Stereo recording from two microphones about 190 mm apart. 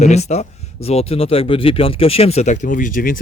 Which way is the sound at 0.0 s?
35° left (ahead or behind).